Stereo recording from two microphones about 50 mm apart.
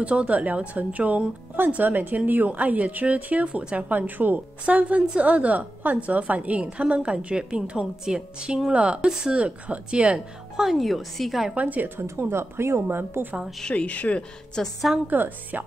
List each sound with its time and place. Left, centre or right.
0.0 s a woman's voice: right
10.5 s speech: centre
11.5 s a woman's voice: right
12.0 s speech: right
13.2 s a woman's voice: right
13.6 s speech: left
14.6 s a woman's voice: centre
15.0 s a woman's voice: right